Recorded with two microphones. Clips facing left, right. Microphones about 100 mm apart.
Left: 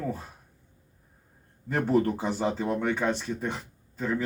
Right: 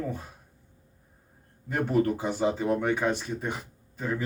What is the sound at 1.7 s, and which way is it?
Speech, 35° left (ahead or behind).